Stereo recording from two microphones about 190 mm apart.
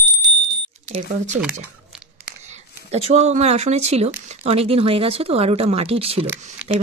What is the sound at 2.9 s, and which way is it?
Speech, 35° right (ahead or behind).